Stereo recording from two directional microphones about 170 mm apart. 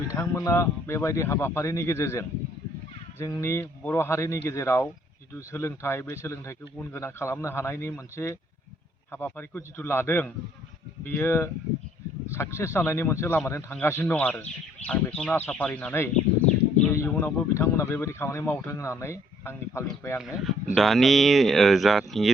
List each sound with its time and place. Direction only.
0.1 s a man's voice: 20° left (ahead or behind)
20.2 s speech: centre (ahead or behind)